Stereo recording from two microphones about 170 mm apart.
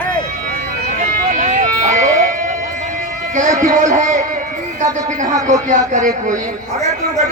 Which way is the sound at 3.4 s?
45° right (ahead or behind).